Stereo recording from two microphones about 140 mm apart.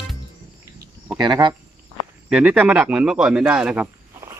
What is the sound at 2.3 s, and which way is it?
Speech, 10° right (ahead or behind).